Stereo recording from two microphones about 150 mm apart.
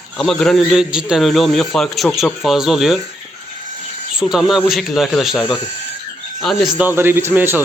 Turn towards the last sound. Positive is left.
turn(degrees=-10)  # may be behind; listen again after turning